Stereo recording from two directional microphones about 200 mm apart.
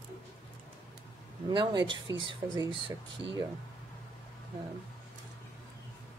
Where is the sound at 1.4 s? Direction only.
20° right (ahead or behind).